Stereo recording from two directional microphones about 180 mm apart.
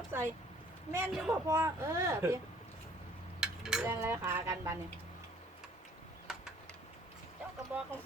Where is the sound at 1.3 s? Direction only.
15° right (ahead or behind).